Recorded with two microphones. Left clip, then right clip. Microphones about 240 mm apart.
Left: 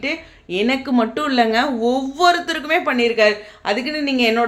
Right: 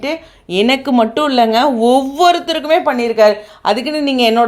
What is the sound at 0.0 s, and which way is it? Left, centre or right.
A woman's voice, right.